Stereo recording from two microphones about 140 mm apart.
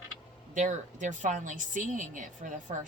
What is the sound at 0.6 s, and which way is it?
A woman's voice, 65° right (ahead or behind).